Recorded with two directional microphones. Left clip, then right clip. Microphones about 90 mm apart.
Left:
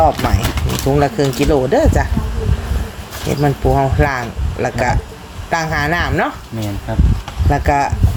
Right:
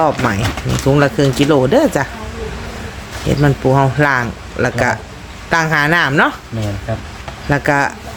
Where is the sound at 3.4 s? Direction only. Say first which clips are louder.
Right 1 dB; 35° right (ahead or behind).